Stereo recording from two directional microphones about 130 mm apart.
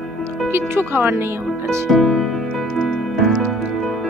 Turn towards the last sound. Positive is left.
turn(degrees=0)  # may be behind; listen again after turning